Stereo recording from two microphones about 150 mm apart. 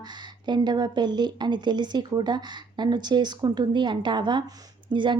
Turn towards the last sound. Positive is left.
turn(degrees=-30)  # may be behind; listen again after turning